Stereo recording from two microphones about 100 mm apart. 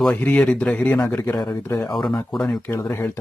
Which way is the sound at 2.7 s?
30° left (ahead or behind).